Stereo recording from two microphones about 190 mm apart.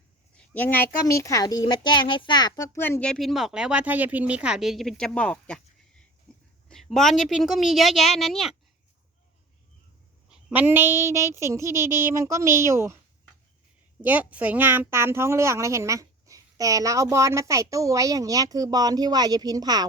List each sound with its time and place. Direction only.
0.3 s speech: 10° left (ahead or behind)
6.3 s whispering: 5° left (ahead or behind)
6.7 s speech: centre (ahead or behind)
10.2 s a woman's voice: 5° right (ahead or behind)
14.0 s a woman's voice: 10° right (ahead or behind)